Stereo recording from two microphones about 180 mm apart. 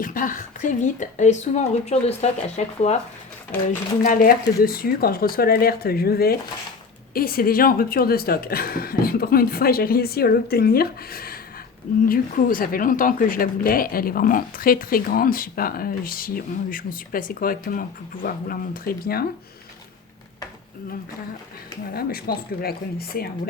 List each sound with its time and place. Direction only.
0.0 s a woman's voice: 50° left (ahead or behind)
4.0 s speech: 50° left (ahead or behind)
21.9 s speech: 55° left (ahead or behind)